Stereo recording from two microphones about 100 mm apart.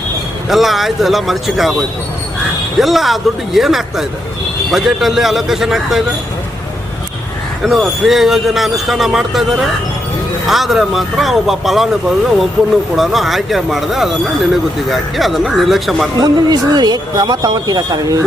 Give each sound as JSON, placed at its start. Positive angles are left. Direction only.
{"t": 0.4, "sound": "speech", "side_deg": 0}
{"t": 2.7, "sound": "speech", "side_deg": 0}
{"t": 7.6, "sound": "speech", "side_deg": 0}
{"t": 13.0, "sound": "speech", "side_deg": 0}
{"t": 16.1, "sound": "speech", "side_deg": -45}